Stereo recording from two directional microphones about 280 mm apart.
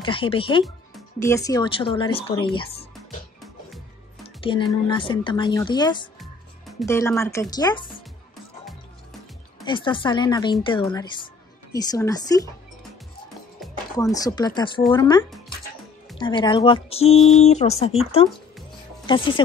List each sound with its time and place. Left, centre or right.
0.0 s speech: centre
4.4 s speech: centre
9.7 s speech: centre
14.1 s speech: centre
19.0 s speech: centre